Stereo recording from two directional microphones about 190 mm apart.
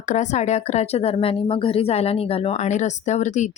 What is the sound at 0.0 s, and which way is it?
Speech, 40° left (ahead or behind).